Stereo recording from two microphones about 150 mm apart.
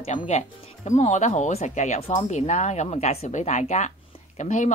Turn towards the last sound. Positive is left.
turn(degrees=55)  # may be behind; listen again after turning